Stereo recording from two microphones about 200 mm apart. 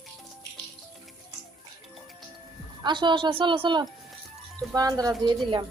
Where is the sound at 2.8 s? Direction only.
25° right (ahead or behind).